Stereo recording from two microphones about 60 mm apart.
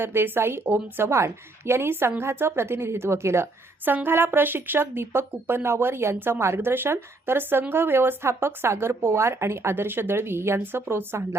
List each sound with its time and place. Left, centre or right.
0.0 s speech: right
3.8 s speech: right